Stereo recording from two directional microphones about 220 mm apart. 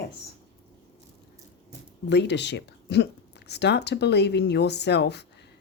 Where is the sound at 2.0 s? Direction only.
50° left (ahead or behind).